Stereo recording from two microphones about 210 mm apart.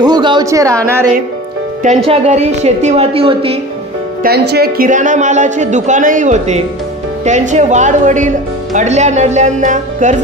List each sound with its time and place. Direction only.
0.0 s a sound: 20° right (ahead or behind)
2.0 s a woman's voice: 30° right (ahead or behind)
4.2 s a woman's voice: 50° right (ahead or behind)